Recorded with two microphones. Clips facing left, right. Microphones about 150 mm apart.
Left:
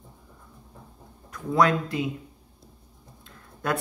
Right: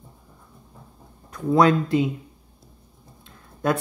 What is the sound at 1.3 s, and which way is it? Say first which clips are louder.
Speech: right 4 dB; 25° right (ahead or behind).